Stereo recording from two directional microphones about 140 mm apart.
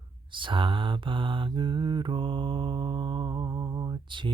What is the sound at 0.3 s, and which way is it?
Mantra, 35° right (ahead or behind).